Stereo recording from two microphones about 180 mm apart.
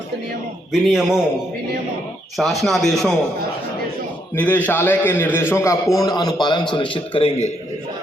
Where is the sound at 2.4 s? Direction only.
Centre (ahead or behind).